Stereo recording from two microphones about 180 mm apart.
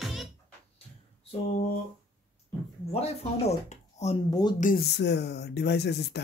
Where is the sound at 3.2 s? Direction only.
35° left (ahead or behind).